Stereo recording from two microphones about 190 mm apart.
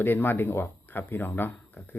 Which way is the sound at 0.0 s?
10° left (ahead or behind).